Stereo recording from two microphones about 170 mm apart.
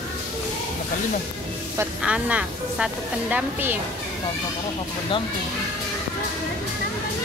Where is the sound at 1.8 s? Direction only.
5° right (ahead or behind).